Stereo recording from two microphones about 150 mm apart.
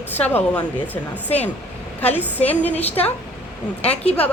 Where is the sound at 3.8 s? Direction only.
45° left (ahead or behind).